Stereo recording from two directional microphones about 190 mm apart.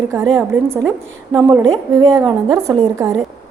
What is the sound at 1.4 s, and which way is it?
A woman's voice, 20° right (ahead or behind).